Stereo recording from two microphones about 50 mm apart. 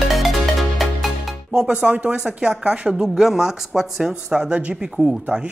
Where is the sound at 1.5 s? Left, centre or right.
Right.